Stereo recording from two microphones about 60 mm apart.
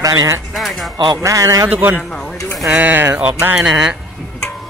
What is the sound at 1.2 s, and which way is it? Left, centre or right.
Speech, right.